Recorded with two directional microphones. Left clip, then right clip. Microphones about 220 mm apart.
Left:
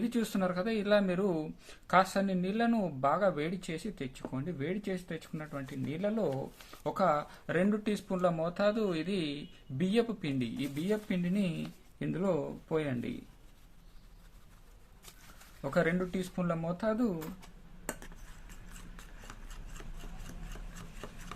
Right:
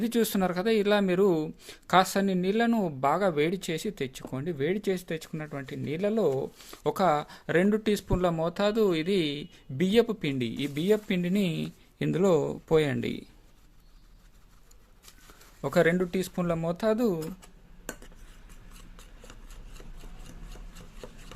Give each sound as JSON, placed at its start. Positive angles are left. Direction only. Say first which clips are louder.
{"t": 0.0, "sound": "speech", "louder": "right 6 dB", "side_deg": -40}
{"t": 15.6, "sound": "speech", "louder": "right 7 dB", "side_deg": -45}